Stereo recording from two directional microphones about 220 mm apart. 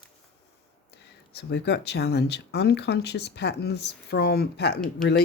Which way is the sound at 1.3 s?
50° left (ahead or behind).